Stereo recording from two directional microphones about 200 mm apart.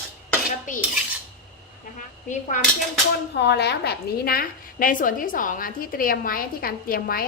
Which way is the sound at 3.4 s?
55° left (ahead or behind).